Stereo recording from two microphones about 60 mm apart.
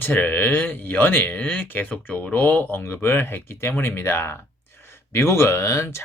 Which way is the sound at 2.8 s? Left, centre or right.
Left.